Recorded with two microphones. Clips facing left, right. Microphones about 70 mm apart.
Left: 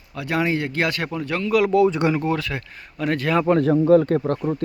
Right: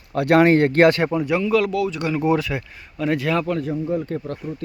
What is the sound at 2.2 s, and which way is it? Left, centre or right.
Speech, centre.